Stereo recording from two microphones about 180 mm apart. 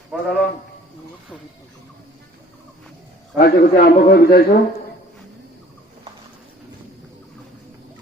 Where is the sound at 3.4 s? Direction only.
55° left (ahead or behind).